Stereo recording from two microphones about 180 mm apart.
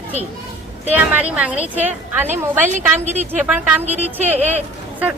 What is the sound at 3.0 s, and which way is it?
Speech, 40° right (ahead or behind).